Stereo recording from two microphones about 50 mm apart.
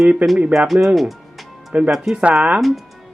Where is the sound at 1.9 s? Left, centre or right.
Centre.